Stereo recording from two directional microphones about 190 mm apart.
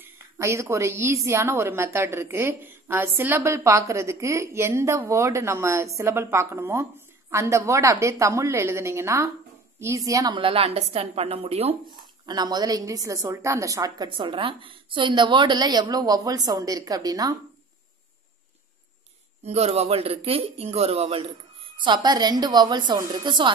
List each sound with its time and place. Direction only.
0.0 s a woman's voice: 15° right (ahead or behind); by 11.7 s 30° right (ahead or behind)
12.3 s a woman's voice: 20° right (ahead or behind)
19.4 s a woman's voice: 35° right (ahead or behind)